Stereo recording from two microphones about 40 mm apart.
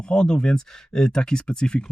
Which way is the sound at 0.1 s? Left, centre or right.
Centre.